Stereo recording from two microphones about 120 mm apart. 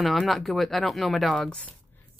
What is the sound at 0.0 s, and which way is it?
Speech, centre (ahead or behind).